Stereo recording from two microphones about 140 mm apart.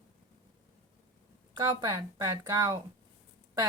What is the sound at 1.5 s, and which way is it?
A woman's voice, 30° right (ahead or behind).